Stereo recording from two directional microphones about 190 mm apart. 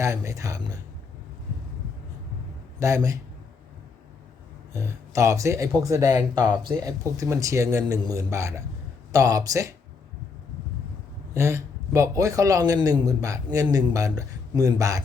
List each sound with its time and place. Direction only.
0.0 s a man's voice: 15° right (ahead or behind)
2.8 s a man's voice: 15° right (ahead or behind)
4.7 s a man's voice: 15° right (ahead or behind)
11.3 s a man's voice: 15° right (ahead or behind)